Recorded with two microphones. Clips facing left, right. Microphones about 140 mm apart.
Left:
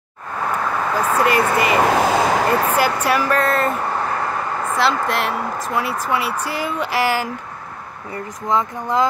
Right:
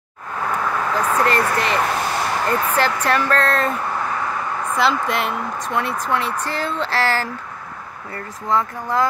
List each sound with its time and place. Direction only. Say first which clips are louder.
0.5 s vehicle: left 1 dB; 10° left (ahead or behind)
1.8 s vehicle: left 6 dB; 80° left
2.7 s speech: left 1 dB; 10° left (ahead or behind)
4.7 s speech: even; centre (ahead or behind); by 9.0 s 20° left (ahead or behind)